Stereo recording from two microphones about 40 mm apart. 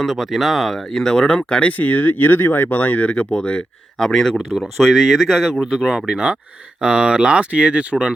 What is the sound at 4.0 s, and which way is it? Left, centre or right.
Speech, centre.